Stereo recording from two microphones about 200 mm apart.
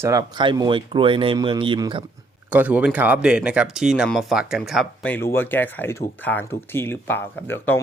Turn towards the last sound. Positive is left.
turn(degrees=10)  # may be behind; listen again after turning